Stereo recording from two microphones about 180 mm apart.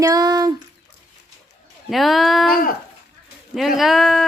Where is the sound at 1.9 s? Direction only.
Centre (ahead or behind).